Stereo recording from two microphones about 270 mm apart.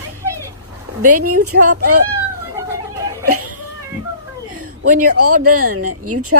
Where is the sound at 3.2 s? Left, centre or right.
Right.